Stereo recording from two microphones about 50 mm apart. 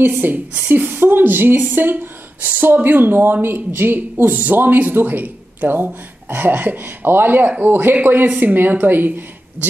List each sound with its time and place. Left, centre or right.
0.0 s a woman's voice: right